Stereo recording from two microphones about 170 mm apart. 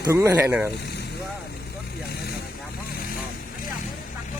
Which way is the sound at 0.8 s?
75° left (ahead or behind).